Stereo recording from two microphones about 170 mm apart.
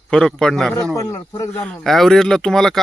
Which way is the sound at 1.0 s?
20° left (ahead or behind).